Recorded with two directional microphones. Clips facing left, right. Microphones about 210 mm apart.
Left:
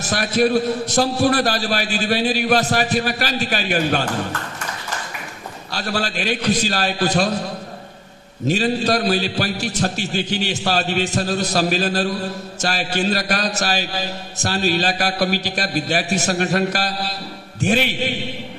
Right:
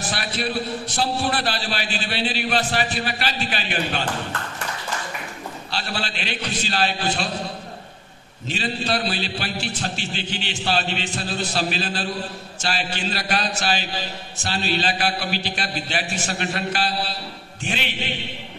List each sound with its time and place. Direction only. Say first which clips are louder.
0.0 s a man's voice: left 9 dB; 45° left (ahead or behind)
5.7 s a man's voice: left 6 dB; 40° left (ahead or behind)
8.5 s a man's voice: left 7 dB; 40° left (ahead or behind)